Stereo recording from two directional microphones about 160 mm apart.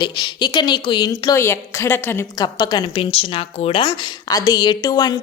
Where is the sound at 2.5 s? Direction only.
30° left (ahead or behind).